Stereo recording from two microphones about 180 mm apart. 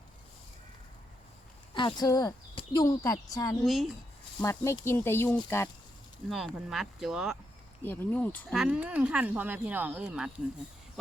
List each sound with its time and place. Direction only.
1.7 s speech: 25° left (ahead or behind)
3.6 s speech: centre (ahead or behind)
4.4 s speech: 15° left (ahead or behind)
6.2 s speech: centre (ahead or behind)
7.9 s speech: 10° left (ahead or behind)
8.5 s speech: 5° right (ahead or behind)